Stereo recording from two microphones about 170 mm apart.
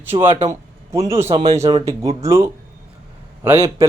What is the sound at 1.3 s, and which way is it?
Speech, 25° right (ahead or behind).